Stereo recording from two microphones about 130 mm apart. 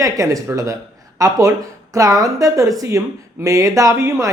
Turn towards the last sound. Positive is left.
turn(degrees=-25)  # may be behind; listen again after turning